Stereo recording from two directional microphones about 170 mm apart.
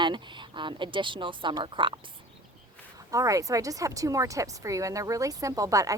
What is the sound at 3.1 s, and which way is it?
Speech, 20° right (ahead or behind).